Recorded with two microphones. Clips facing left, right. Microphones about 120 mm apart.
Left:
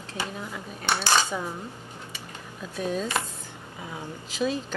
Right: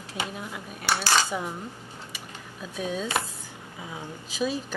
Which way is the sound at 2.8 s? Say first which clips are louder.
Left 2 dB; centre (ahead or behind).